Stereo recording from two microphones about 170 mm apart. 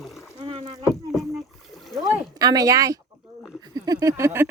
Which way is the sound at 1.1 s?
Centre (ahead or behind).